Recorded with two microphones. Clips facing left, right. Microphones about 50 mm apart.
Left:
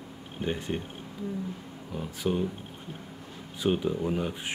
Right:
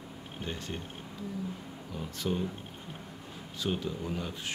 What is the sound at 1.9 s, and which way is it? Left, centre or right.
Speech, centre.